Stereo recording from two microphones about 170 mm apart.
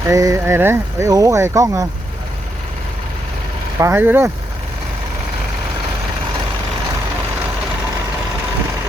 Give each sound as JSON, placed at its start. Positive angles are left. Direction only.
{"t": 0.1, "sound": "speech", "side_deg": -20}
{"t": 3.8, "sound": "speech", "side_deg": -15}